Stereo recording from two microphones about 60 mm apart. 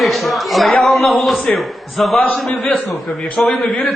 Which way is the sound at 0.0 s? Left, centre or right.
Centre.